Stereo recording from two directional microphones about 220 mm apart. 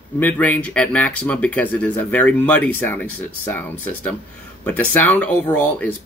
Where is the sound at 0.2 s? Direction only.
5° left (ahead or behind).